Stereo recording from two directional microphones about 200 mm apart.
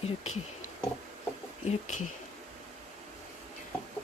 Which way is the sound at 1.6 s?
35° left (ahead or behind).